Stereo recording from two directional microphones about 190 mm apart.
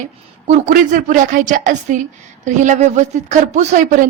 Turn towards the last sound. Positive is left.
turn(degrees=-40)  # may be behind; listen again after turning